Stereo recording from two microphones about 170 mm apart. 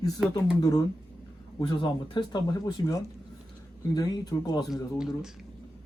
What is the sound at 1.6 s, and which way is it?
Speech, 25° left (ahead or behind).